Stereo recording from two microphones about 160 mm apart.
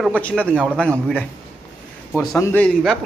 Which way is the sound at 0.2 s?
10° left (ahead or behind).